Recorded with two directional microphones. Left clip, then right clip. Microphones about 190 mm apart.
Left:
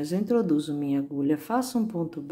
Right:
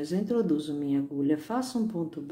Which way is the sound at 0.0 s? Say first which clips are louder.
Left 3 dB; 25° left (ahead or behind).